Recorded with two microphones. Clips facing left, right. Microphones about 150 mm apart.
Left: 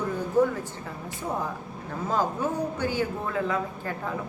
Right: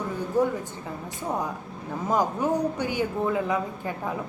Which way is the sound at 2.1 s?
15° right (ahead or behind).